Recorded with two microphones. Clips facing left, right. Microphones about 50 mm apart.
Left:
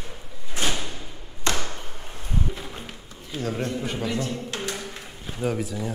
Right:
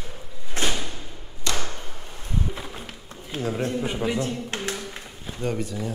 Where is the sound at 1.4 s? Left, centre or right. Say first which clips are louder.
Left 2 dB; left.